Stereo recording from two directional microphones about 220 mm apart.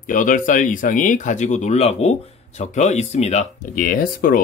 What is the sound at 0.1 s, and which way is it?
Speech, 35° left (ahead or behind).